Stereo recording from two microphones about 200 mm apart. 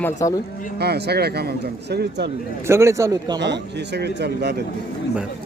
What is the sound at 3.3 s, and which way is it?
Speech, 60° right (ahead or behind).